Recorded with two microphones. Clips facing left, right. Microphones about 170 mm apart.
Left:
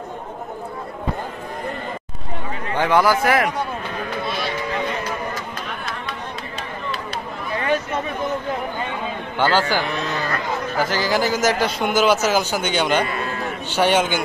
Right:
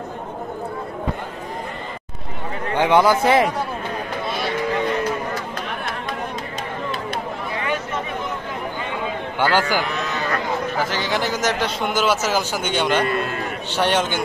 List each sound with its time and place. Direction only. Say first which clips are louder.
2.8 s speech: right 1 dB; 20° right (ahead or behind)
9.4 s a man's voice: left 1 dB; 15° right (ahead or behind)
10.8 s a man's voice: left 6 dB; centre (ahead or behind)